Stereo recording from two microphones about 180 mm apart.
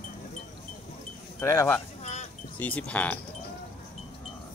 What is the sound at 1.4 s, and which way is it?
Speech, 15° left (ahead or behind).